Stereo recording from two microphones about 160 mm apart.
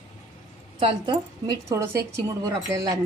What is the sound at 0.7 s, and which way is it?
Speech, 30° right (ahead or behind).